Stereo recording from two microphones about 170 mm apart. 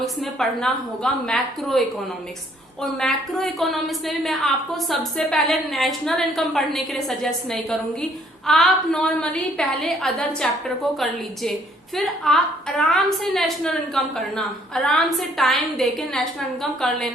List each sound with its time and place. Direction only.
0.0 s a woman's voice: centre (ahead or behind)
2.8 s a woman's voice: centre (ahead or behind)
11.9 s a woman's voice: centre (ahead or behind)